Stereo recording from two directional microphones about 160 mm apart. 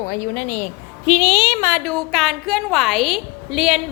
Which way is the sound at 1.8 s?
Centre (ahead or behind).